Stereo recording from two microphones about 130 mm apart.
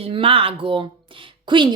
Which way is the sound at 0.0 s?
45° right (ahead or behind).